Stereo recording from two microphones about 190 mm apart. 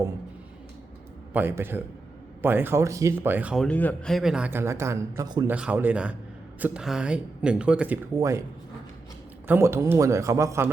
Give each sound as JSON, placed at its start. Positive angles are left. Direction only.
{"t": 1.3, "sound": "speech", "side_deg": -10}
{"t": 5.5, "sound": "speech", "side_deg": -10}
{"t": 9.5, "sound": "speech", "side_deg": -15}